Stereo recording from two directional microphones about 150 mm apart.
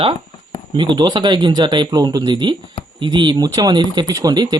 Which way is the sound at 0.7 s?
30° right (ahead or behind).